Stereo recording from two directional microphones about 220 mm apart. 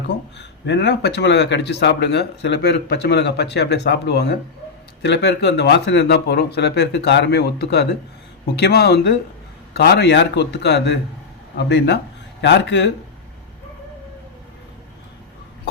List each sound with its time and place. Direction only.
0.1 s speech: 50° left (ahead or behind)